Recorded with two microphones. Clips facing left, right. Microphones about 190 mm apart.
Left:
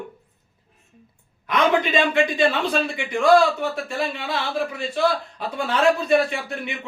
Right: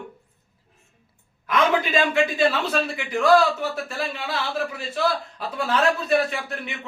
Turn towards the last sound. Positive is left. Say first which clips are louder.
# left 2 dB
turn(degrees=0)  # may be behind; listen again after turning